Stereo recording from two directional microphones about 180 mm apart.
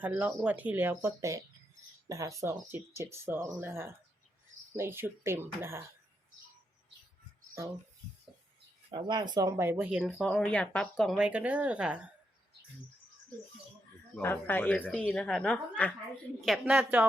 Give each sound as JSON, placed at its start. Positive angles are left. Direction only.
{"t": 0.0, "sound": "speech", "side_deg": -10}
{"t": 8.9, "sound": "speech", "side_deg": -25}
{"t": 10.0, "sound": "speech", "side_deg": 0}
{"t": 14.2, "sound": "speech", "side_deg": 10}
{"t": 16.5, "sound": "speech", "side_deg": -5}